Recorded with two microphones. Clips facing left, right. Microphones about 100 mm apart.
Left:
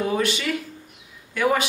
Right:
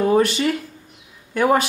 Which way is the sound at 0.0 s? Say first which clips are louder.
Right 7 dB; 40° right (ahead or behind).